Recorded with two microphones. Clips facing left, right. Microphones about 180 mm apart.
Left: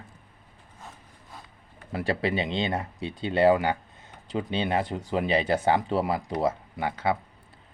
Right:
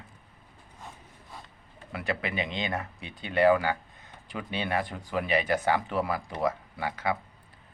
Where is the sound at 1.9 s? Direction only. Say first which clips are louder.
Left 5 dB; 30° left (ahead or behind).